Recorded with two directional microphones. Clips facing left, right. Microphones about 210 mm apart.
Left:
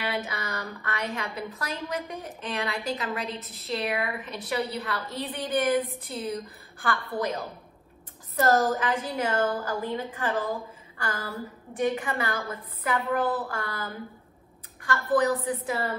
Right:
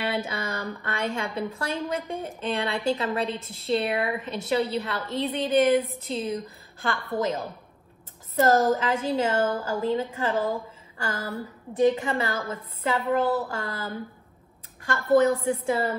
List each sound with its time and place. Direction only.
0.0 s speech: 25° right (ahead or behind)
8.4 s speech: 25° right (ahead or behind)
14.9 s speech: 25° right (ahead or behind)